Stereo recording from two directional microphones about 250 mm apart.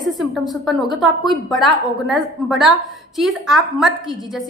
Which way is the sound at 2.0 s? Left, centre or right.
Centre.